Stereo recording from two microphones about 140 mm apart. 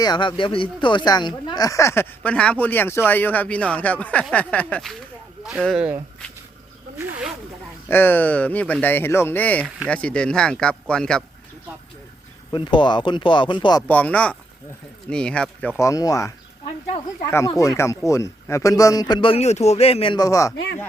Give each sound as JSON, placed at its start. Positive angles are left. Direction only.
{"t": 0.0, "sound": "speech", "side_deg": 35}
{"t": 7.0, "sound": "snake", "side_deg": -5}
{"t": 7.9, "sound": "speech", "side_deg": 15}
{"t": 9.6, "sound": "speech", "side_deg": -5}
{"t": 9.9, "sound": "speech", "side_deg": 10}
{"t": 12.5, "sound": "speech", "side_deg": 35}
{"t": 13.8, "sound": "speech", "side_deg": 10}
{"t": 15.8, "sound": "speech", "side_deg": 25}
{"t": 16.6, "sound": "speech", "side_deg": 50}
{"t": 17.3, "sound": "speech", "side_deg": 25}
{"t": 20.1, "sound": "speech", "side_deg": 25}